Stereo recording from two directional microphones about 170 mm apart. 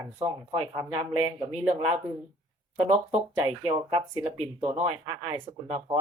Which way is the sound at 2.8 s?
35° right (ahead or behind).